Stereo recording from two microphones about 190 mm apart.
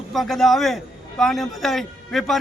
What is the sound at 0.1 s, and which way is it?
A man's voice, centre (ahead or behind).